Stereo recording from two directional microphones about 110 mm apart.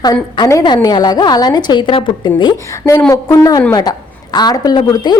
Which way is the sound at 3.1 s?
30° left (ahead or behind).